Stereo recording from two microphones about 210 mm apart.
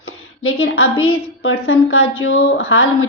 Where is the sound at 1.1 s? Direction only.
75° left (ahead or behind).